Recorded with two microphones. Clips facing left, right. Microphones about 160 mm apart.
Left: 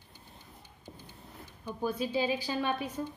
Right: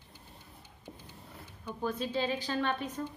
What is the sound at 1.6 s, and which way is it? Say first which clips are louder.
Speech: left 2 dB; 10° left (ahead or behind).